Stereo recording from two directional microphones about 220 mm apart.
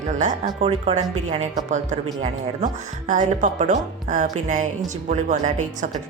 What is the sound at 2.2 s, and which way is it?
Speech, 35° right (ahead or behind).